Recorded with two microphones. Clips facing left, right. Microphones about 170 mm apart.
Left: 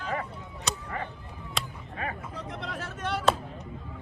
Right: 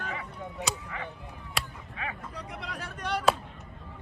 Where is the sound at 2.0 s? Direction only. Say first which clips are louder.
Left 3 dB; 40° left (ahead or behind).